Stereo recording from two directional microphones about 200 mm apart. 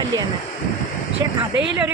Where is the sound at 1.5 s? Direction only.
65° right (ahead or behind).